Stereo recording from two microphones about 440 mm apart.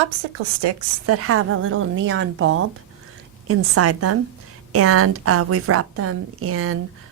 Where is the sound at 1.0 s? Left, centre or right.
Right.